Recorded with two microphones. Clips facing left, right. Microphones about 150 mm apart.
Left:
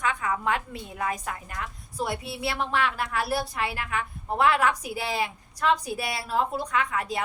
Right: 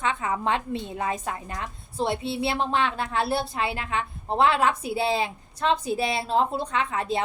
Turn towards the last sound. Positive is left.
turn(degrees=-30)  # may be behind; listen again after turning